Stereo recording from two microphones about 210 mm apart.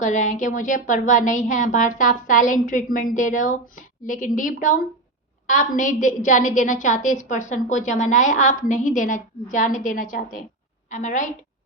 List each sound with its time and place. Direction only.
0.0 s a woman's voice: 35° left (ahead or behind)